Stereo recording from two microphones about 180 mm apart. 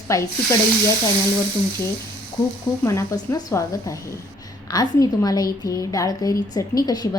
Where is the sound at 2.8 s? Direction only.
15° left (ahead or behind).